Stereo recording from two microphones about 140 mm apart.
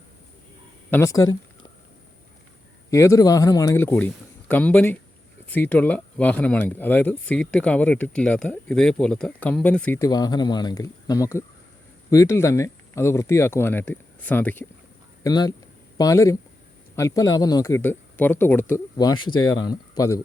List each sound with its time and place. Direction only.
0.9 s speech: 15° left (ahead or behind)
1.1 s a sound: 30° left (ahead or behind)
2.9 s speech: 20° left (ahead or behind)
10.0 s speech: 30° left (ahead or behind)
15.2 s speech: 30° left (ahead or behind)
18.9 s speech: 30° left (ahead or behind)